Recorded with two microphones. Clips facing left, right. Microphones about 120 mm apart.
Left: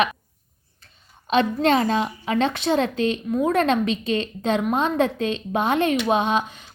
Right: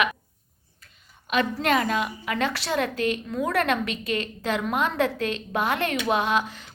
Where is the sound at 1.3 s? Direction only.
30° left (ahead or behind).